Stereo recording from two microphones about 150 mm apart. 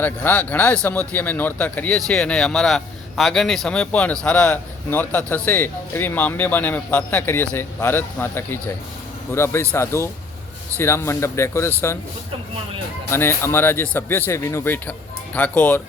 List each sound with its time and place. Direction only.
0.0 s a man's voice: 10° left (ahead or behind)
13.1 s a man's voice: 15° left (ahead or behind)